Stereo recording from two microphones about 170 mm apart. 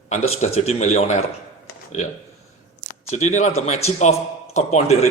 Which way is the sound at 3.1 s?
45° left (ahead or behind).